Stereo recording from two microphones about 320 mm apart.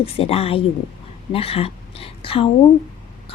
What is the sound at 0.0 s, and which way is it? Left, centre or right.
A woman's voice, centre.